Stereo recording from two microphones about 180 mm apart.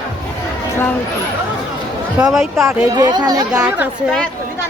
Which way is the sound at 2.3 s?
Centre (ahead or behind).